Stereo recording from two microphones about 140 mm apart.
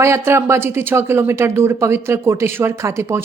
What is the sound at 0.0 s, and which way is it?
A woman's voice, 20° right (ahead or behind).